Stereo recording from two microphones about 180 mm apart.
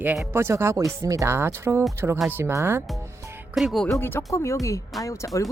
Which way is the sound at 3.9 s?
15° left (ahead or behind).